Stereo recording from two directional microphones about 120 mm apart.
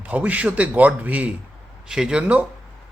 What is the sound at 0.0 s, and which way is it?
Speech, 15° right (ahead or behind).